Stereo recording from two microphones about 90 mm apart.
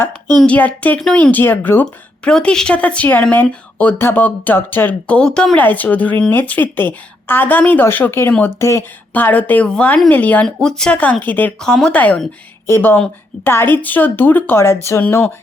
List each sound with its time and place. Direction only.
0.4 s speech: 15° left (ahead or behind)
2.2 s speech: 10° left (ahead or behind); by 8.8 s 30° left (ahead or behind)
9.1 s speech: 20° left (ahead or behind)
10.4 s speech: 5° left (ahead or behind)
11.6 s speech: 5° left (ahead or behind)
12.6 s speech: 25° left (ahead or behind)